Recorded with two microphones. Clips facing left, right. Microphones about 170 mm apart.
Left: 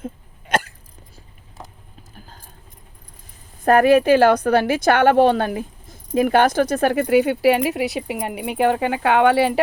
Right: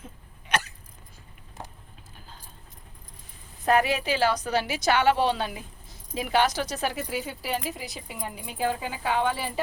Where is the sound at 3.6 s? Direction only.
50° left (ahead or behind).